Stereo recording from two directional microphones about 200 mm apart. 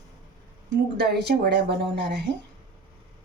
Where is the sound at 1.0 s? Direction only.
55° right (ahead or behind).